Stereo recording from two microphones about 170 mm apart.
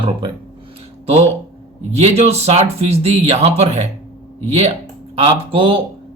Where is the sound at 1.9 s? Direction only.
40° right (ahead or behind).